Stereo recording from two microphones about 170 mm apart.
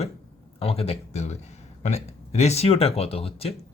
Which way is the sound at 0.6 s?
35° left (ahead or behind).